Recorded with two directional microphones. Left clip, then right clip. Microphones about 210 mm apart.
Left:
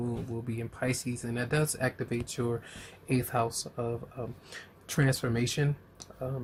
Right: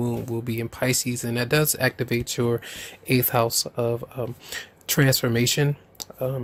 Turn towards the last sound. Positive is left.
turn(degrees=-45)  # may be behind; listen again after turning